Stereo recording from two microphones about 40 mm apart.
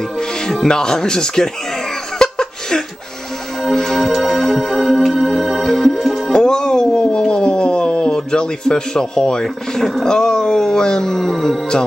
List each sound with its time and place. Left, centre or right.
0.7 s speech: centre
2.1 s laughter: centre
3.7 s music: centre
4.0 s music: centre
4.7 s music: centre
5.6 s music: centre
5.9 s music: centre
6.3 s a sound: centre
10.0 s speech: centre